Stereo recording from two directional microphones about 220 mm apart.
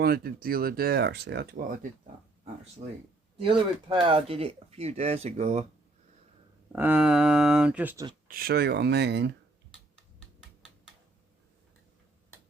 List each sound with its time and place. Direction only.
0.0 s speech: 45° right (ahead or behind)
2.8 s speech: 30° right (ahead or behind)
6.7 s speech: 5° right (ahead or behind)
8.3 s speech: 45° right (ahead or behind)